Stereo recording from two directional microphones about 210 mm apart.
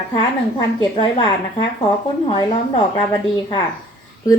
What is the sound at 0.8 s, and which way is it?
Speech, 25° left (ahead or behind).